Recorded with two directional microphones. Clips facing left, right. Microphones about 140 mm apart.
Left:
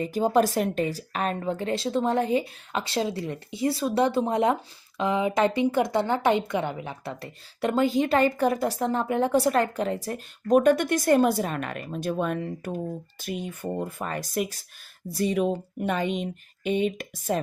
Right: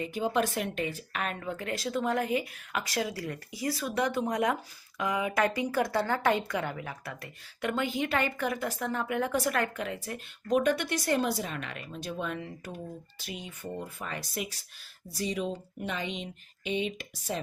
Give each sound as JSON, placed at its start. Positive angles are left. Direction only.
{"t": 0.0, "sound": "a woman's voice", "side_deg": 40}